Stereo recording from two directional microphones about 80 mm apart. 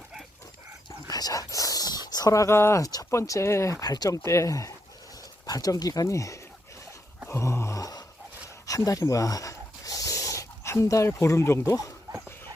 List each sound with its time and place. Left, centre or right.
1.0 s speech: left
2.8 s speech: left
3.8 s speech: left
4.2 s speech: left
7.3 s groan: left
8.6 s dog: left
11.7 s speech: left